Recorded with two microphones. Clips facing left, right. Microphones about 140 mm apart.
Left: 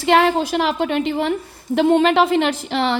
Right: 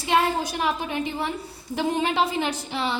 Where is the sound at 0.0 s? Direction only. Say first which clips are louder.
Left 7 dB; 75° left (ahead or behind).